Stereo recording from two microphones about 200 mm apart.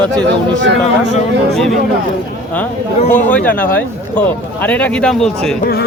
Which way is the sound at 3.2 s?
10° left (ahead or behind).